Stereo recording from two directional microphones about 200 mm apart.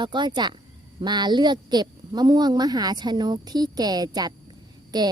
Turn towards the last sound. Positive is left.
turn(degrees=-20)  # may be behind; listen again after turning